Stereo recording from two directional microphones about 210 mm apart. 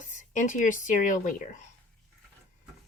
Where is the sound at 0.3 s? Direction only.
35° left (ahead or behind).